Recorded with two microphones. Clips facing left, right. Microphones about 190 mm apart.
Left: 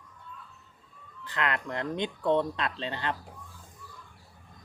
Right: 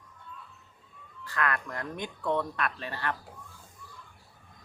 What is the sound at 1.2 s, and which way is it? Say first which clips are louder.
Speech: even; 20° left (ahead or behind).